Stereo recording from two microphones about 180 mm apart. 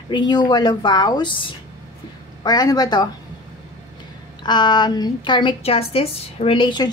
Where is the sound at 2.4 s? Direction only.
20° left (ahead or behind).